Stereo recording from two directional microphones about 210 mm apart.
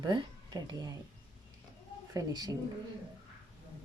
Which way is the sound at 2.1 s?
20° right (ahead or behind).